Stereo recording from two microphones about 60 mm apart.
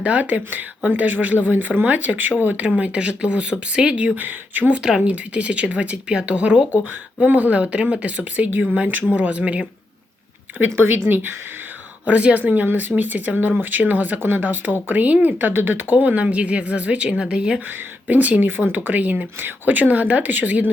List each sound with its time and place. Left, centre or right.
0.0 s speech: right
4.8 s speech: centre
10.8 s speech: right
12.0 s speech: right
16.0 s speech: right
17.7 s speech: right